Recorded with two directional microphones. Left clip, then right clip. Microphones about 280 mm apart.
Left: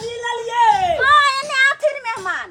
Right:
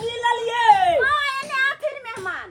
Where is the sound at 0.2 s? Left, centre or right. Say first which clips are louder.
Right 1 dB; right.